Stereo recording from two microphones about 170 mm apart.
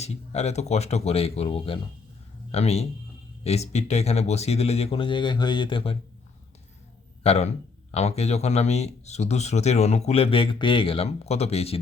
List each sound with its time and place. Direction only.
0.0 s speech: 40° left (ahead or behind)
7.2 s speech: 35° left (ahead or behind)